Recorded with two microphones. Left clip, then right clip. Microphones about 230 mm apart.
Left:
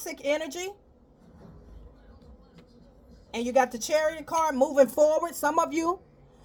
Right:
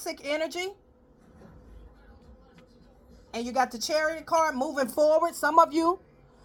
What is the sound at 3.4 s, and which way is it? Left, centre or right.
A woman's voice, right.